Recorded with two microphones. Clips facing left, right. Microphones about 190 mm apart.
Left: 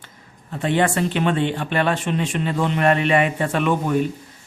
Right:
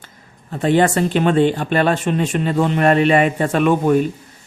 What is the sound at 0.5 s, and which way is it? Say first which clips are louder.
A man's voice: right 5 dB; 40° right (ahead or behind).